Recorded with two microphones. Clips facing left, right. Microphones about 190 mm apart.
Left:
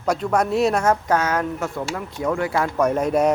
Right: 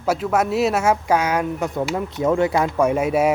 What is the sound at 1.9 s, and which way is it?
Speech, 25° right (ahead or behind).